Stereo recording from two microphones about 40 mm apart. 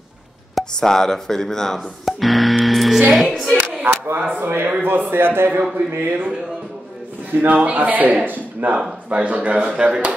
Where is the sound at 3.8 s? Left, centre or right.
Right.